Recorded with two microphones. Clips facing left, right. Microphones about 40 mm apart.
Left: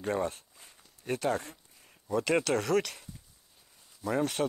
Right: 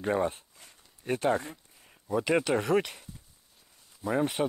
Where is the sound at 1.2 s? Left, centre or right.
Right.